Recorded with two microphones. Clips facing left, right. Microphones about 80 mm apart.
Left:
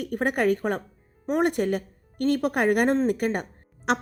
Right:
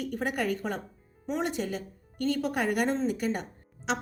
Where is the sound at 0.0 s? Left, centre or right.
Left.